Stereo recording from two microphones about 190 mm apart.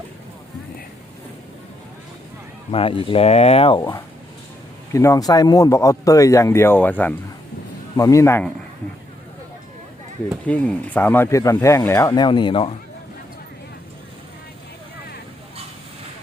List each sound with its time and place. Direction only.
2.7 s speech: 30° left (ahead or behind); by 8.4 s 15° left (ahead or behind)
10.4 s speech: 5° left (ahead or behind); by 12.7 s 25° left (ahead or behind)